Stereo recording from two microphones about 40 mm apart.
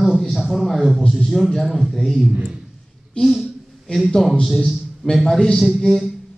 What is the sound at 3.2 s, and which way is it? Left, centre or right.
Speech, left.